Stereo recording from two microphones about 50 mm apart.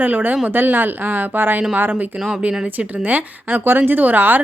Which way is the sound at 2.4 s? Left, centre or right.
Right.